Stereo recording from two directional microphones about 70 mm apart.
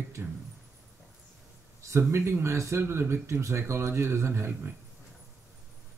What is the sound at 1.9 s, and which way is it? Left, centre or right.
Speech, right.